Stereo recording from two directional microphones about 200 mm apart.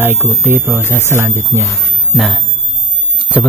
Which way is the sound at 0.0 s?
10° right (ahead or behind).